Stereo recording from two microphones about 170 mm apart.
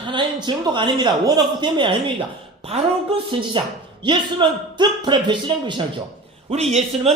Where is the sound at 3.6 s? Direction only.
30° right (ahead or behind).